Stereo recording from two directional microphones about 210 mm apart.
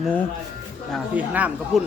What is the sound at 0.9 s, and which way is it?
Speech, 5° right (ahead or behind).